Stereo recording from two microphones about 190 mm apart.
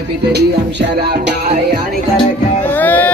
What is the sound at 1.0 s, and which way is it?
Music, 55° right (ahead or behind).